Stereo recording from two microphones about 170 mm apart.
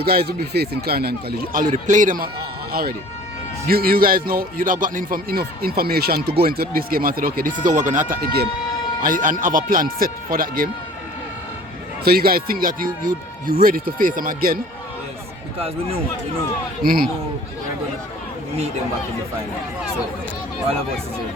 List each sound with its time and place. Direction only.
0.0 s a man's voice: 65° right (ahead or behind)
1.6 s speech: 45° right (ahead or behind)
3.7 s a man's voice: 60° right (ahead or behind)
7.6 s a man's voice: 45° right (ahead or behind)
12.0 s a man's voice: 60° right (ahead or behind)
15.5 s speech: 35° right (ahead or behind)
16.8 s a man's voice: 60° right (ahead or behind)